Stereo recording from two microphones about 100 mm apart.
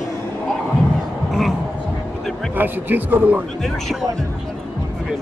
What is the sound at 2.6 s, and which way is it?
Speech, 20° right (ahead or behind).